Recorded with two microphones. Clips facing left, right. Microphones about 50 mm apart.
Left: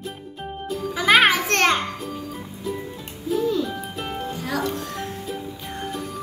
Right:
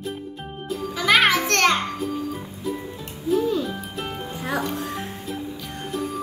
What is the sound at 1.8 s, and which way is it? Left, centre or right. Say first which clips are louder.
Music: right 3 dB; centre.